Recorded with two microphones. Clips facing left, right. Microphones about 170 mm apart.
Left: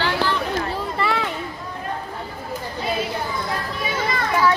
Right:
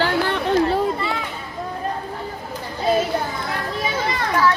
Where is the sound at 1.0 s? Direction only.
70° left (ahead or behind).